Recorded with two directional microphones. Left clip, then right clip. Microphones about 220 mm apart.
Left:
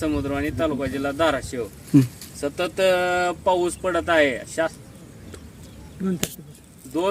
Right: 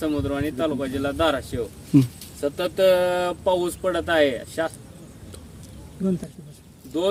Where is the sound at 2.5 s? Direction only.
25° right (ahead or behind).